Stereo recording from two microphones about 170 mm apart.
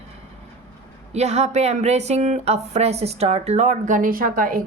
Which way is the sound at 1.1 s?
40° right (ahead or behind).